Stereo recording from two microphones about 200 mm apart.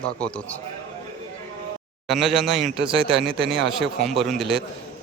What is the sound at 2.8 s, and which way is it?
Speech, 25° right (ahead or behind).